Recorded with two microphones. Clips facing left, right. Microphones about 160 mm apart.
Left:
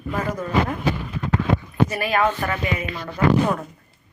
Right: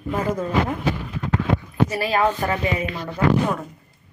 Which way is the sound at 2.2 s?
15° right (ahead or behind).